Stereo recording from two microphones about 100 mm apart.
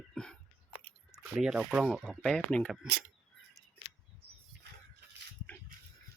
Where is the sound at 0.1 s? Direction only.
5° left (ahead or behind).